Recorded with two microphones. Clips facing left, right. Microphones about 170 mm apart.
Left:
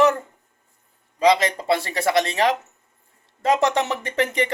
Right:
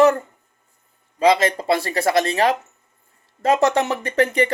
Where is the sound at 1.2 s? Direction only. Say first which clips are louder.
Right 1 dB; 15° left (ahead or behind).